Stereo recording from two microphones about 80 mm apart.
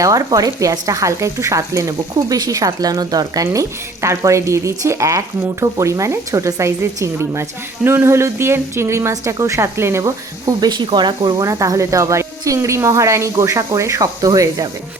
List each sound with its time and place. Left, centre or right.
0.0 s speech: right
10.0 s speech: right
11.3 s speech: right